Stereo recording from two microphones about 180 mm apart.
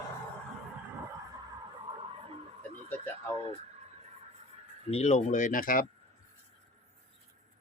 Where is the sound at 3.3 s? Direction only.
35° right (ahead or behind).